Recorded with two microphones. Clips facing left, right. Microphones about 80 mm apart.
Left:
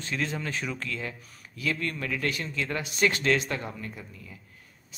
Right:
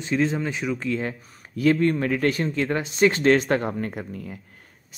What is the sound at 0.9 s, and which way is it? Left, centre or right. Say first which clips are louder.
Speech: right 9 dB; right.